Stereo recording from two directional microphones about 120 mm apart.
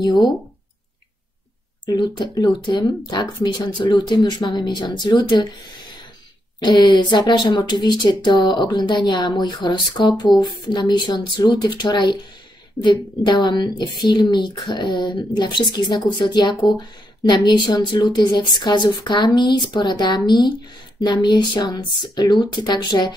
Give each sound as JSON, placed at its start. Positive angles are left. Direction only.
{"t": 0.0, "sound": "speech", "side_deg": 35}
{"t": 1.9, "sound": "speech", "side_deg": 35}
{"t": 6.6, "sound": "speech", "side_deg": 40}